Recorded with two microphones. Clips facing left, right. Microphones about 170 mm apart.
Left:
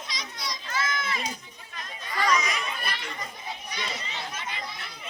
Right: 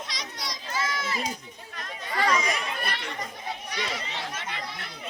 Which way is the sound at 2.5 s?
65° right (ahead or behind).